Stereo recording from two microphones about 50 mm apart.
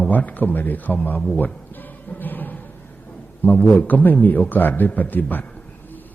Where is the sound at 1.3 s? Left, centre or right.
Left.